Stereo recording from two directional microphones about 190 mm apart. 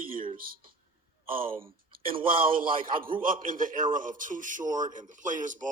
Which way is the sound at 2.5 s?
50° right (ahead or behind).